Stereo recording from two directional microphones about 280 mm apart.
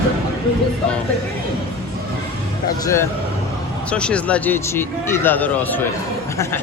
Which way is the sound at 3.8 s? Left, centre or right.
Centre.